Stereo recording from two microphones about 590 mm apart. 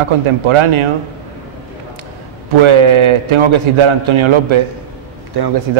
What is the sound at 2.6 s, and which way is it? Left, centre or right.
A man's voice, right.